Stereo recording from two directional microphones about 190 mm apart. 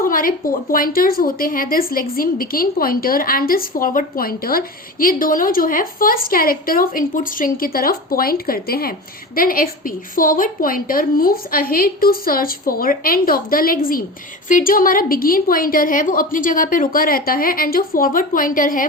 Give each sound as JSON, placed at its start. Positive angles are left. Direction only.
{"t": 0.0, "sound": "a woman's voice", "side_deg": 45}